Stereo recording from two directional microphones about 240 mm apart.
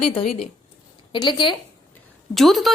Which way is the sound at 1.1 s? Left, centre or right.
Centre.